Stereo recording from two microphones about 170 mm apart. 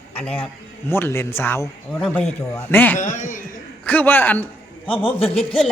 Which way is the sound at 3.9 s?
10° left (ahead or behind).